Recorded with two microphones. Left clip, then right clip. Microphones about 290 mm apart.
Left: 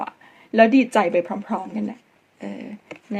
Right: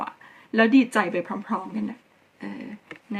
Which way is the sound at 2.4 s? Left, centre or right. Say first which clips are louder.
Left 3 dB; centre.